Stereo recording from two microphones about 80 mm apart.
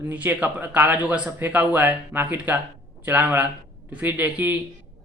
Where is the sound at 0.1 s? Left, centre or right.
Right.